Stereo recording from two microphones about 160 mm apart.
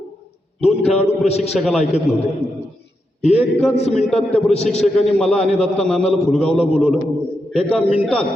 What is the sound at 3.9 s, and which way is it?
A man's voice, 5° left (ahead or behind).